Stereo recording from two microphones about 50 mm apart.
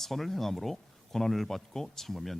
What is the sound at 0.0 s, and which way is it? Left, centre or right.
Speech, centre.